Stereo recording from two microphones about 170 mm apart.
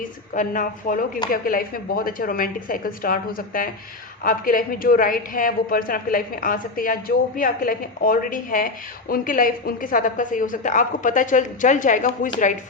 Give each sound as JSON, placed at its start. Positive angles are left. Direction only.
{"t": 0.0, "sound": "a woman's voice", "side_deg": 50}